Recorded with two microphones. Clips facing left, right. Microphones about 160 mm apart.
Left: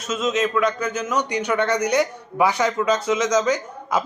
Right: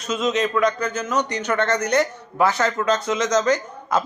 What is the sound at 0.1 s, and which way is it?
A man's voice, 5° left (ahead or behind).